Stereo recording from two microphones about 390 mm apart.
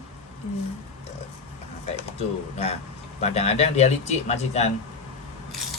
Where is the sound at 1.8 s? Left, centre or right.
Centre.